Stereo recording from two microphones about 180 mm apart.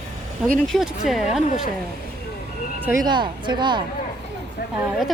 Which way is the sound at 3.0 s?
25° right (ahead or behind).